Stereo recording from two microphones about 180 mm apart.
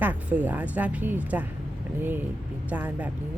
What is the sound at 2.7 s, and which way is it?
Speech, 10° right (ahead or behind).